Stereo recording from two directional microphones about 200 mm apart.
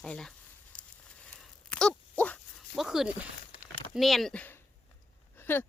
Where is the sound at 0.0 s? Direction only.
5° left (ahead or behind).